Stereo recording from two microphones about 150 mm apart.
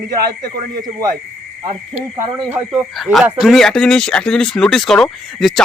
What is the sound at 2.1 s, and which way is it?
Speech, 20° right (ahead or behind).